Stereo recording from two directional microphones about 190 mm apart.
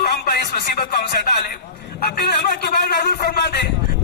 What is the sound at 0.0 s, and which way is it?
A man's voice, 55° left (ahead or behind).